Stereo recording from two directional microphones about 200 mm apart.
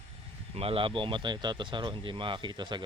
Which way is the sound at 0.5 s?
25° right (ahead or behind).